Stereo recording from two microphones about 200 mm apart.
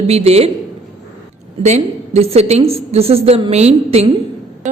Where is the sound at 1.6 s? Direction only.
35° right (ahead or behind).